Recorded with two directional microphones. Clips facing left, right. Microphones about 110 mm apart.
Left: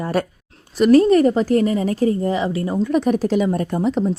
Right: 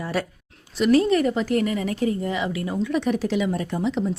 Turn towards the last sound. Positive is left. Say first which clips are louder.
# left 5 dB
turn(degrees=45)  # may be behind; listen again after turning